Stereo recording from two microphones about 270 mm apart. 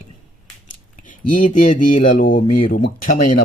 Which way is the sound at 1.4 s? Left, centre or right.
Left.